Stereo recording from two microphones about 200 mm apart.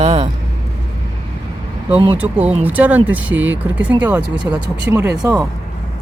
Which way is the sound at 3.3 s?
70° right (ahead or behind).